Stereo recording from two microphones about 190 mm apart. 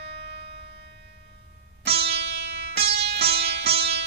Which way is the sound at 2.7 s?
55° right (ahead or behind).